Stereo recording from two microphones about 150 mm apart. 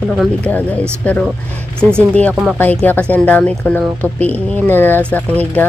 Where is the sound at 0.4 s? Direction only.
10° left (ahead or behind).